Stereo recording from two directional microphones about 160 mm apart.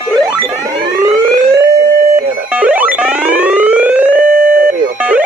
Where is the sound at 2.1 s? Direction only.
10° right (ahead or behind).